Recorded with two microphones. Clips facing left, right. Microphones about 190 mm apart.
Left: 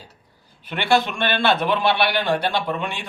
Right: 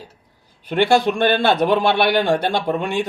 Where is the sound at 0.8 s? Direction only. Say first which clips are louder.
Right 5 dB; 45° right (ahead or behind).